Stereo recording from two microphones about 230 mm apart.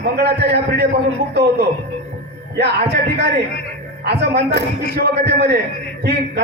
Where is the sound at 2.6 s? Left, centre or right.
Right.